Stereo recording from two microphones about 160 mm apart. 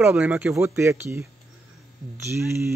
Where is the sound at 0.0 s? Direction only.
5° right (ahead or behind).